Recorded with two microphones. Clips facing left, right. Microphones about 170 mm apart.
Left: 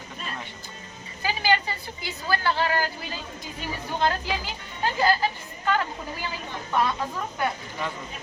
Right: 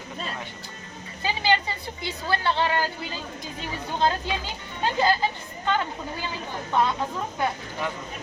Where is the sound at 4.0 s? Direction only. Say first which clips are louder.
Right 1 dB; 20° right (ahead or behind).